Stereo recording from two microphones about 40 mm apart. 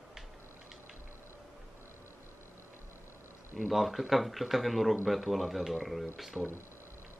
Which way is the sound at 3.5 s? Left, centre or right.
Centre.